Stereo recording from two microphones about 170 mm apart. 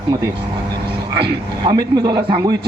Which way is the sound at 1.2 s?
25° right (ahead or behind).